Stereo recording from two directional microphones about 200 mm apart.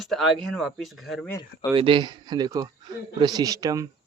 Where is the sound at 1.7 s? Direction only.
25° right (ahead or behind).